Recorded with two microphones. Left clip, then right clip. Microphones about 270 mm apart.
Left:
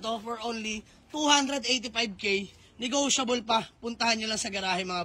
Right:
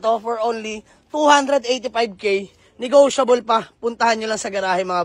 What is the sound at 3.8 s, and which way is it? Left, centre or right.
Speech, centre.